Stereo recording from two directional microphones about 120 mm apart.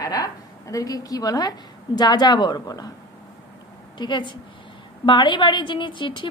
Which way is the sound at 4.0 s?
40° left (ahead or behind).